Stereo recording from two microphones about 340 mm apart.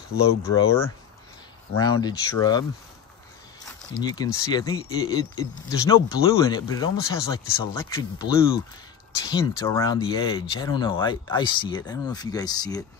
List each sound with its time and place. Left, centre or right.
0.1 s speech: left
2.0 s speech: centre
4.0 s speech: centre